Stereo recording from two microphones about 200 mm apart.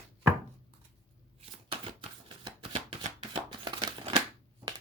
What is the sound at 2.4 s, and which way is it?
Chopping, 30° right (ahead or behind).